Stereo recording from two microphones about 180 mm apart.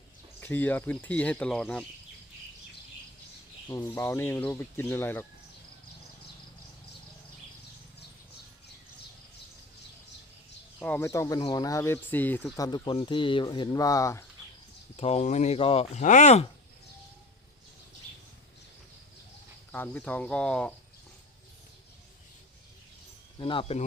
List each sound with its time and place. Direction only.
0.3 s speech: 10° left (ahead or behind)
3.7 s speech: 15° left (ahead or behind)
10.8 s speech: 10° left (ahead or behind)
12.5 s speech: 20° left (ahead or behind)
14.9 s speech: 35° left (ahead or behind)
19.7 s speech: 10° left (ahead or behind)
23.4 s speech: 30° left (ahead or behind)